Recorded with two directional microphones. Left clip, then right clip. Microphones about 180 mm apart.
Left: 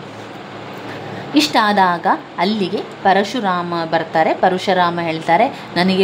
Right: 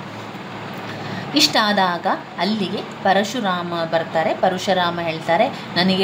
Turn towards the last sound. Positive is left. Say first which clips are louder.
# left 2 dB
turn(degrees=25)  # may be behind; listen again after turning